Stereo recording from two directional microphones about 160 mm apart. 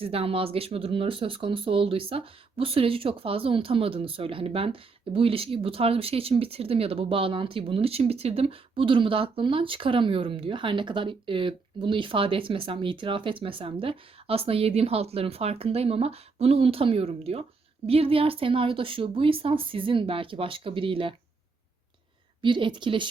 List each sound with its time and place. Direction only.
0.0 s speech: 35° right (ahead or behind)
22.4 s speech: 30° right (ahead or behind)